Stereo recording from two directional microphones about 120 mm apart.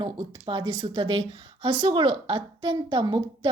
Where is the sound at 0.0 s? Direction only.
45° right (ahead or behind).